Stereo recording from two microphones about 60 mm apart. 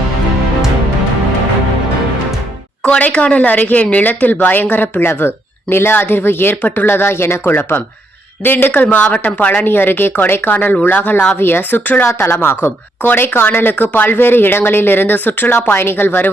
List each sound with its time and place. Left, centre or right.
2.8 s a woman's voice: centre
9.6 s speech: left